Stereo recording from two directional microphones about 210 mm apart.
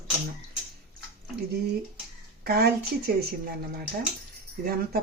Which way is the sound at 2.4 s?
45° right (ahead or behind).